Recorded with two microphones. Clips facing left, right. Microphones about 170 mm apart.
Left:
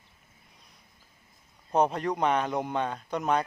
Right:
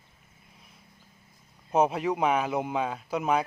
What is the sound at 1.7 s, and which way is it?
A man's voice, 5° right (ahead or behind).